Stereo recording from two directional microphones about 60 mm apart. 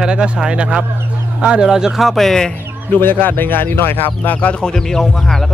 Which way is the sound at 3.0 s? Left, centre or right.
Left.